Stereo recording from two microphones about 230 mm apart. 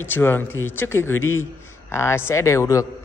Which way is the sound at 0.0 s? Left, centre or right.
Centre.